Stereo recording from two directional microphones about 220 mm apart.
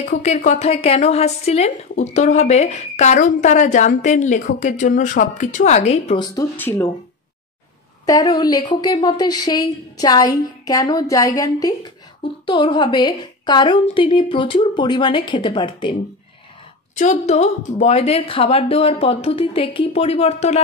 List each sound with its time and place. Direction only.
0.0 s speech: 30° left (ahead or behind)
6.2 s speech: 10° left (ahead or behind)
8.0 s a woman's voice: 15° left (ahead or behind)
16.9 s a woman's voice: 35° left (ahead or behind)